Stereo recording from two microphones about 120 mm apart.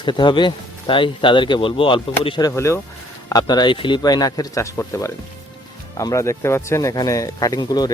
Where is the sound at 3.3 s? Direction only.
35° left (ahead or behind).